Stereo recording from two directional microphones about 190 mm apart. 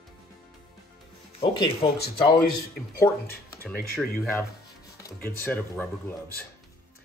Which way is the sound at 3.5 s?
10° left (ahead or behind).